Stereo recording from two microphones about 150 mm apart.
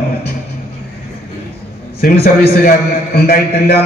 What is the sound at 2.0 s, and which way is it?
A man's voice, 90° left.